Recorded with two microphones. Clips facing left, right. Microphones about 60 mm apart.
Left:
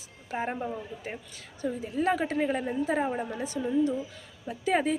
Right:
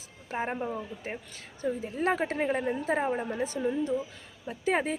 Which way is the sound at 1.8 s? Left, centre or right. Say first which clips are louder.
Left 2 dB; right.